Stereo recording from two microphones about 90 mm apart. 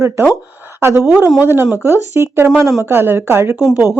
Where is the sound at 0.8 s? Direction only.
30° right (ahead or behind).